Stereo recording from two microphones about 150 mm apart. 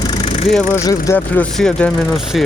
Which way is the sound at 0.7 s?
20° left (ahead or behind).